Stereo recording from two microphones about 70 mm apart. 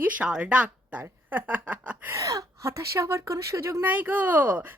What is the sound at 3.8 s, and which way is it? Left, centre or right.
Speech, right.